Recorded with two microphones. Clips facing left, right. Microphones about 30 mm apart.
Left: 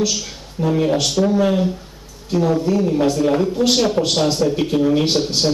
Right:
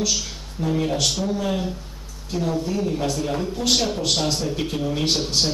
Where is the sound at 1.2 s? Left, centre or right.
Left.